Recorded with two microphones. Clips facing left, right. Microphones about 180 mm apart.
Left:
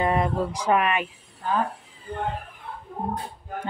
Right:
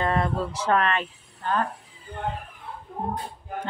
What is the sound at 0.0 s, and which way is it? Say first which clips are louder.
A woman's voice: left 2 dB; 15° left (ahead or behind).